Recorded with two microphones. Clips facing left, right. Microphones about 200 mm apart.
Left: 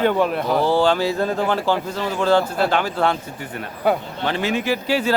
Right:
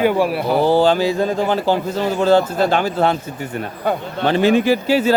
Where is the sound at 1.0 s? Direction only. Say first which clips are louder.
Right 3 dB; 15° right (ahead or behind).